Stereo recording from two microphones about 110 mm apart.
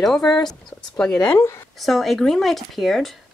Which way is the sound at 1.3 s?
25° left (ahead or behind).